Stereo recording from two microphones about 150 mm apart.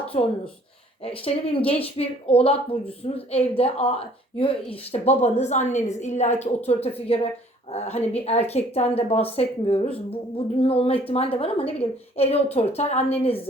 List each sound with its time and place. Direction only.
0.1 s a woman's voice: 40° left (ahead or behind)